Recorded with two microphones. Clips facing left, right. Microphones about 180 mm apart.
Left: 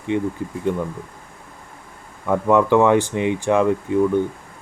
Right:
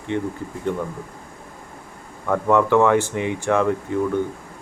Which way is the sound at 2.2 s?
10° left (ahead or behind).